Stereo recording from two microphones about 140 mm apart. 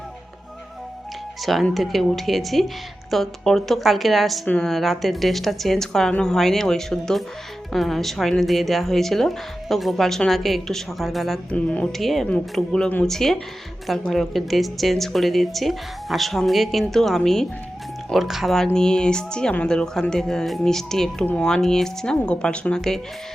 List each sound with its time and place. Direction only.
1.4 s speech: centre (ahead or behind)